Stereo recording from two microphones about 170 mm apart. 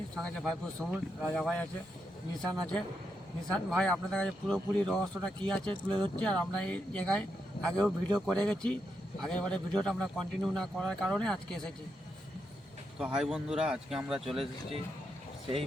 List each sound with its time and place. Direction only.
0.2 s speech: 5° left (ahead or behind)
0.9 s speech: 5° right (ahead or behind)
1.3 s speech: 5° left (ahead or behind)
13.1 s speech: 5° right (ahead or behind)